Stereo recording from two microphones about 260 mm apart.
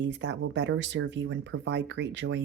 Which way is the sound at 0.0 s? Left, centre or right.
Right.